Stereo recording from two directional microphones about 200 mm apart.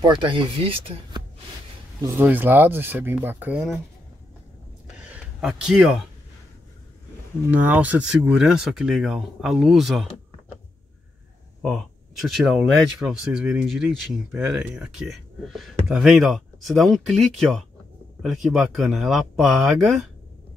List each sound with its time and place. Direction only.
0.0 s speech: 25° right (ahead or behind)
2.0 s speech: 15° right (ahead or behind)
4.8 s a sound: 5° right (ahead or behind)
7.5 s speech: 5° right (ahead or behind)
11.6 s speech: centre (ahead or behind)